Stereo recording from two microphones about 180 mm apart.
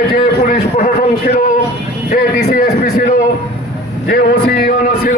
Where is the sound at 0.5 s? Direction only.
50° left (ahead or behind).